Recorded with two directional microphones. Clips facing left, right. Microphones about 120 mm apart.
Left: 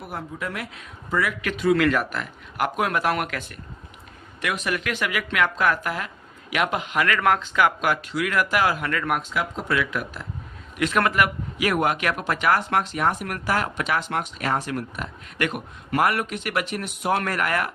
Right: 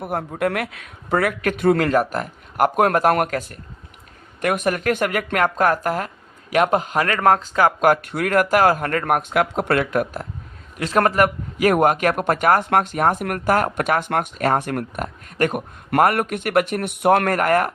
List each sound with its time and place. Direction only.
0.0 s speech: 55° right (ahead or behind)
1.8 s a man's voice: 40° right (ahead or behind)
9.3 s speech: 65° right (ahead or behind)
9.8 s a man's voice: 45° right (ahead or behind)
10.8 s a man's voice: 35° right (ahead or behind)